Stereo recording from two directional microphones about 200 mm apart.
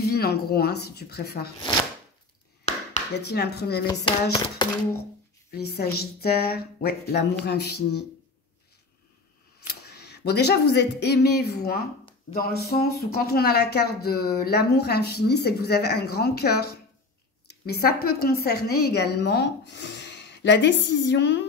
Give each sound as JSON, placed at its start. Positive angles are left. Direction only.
{"t": 0.0, "sound": "speech", "side_deg": 50}
{"t": 3.3, "sound": "speech", "side_deg": 55}
{"t": 3.8, "sound": "hands", "side_deg": 25}
{"t": 5.5, "sound": "a woman's voice", "side_deg": 50}
{"t": 9.7, "sound": "a woman's voice", "side_deg": 55}